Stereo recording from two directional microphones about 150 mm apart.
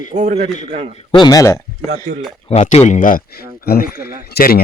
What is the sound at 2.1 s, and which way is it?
Speech, 90° right.